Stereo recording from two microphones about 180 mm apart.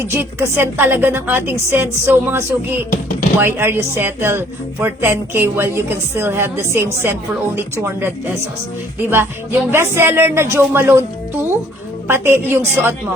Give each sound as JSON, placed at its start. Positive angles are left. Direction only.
{"t": 0.0, "sound": "speech", "side_deg": -15}
{"t": 12.0, "sound": "speech", "side_deg": -10}